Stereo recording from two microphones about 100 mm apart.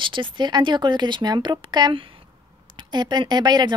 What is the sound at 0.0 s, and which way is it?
Speech, 55° right (ahead or behind).